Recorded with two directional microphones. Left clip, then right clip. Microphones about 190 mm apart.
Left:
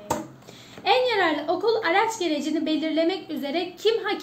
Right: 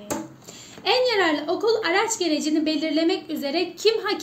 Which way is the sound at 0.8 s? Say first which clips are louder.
Right 1 dB; 45° right (ahead or behind).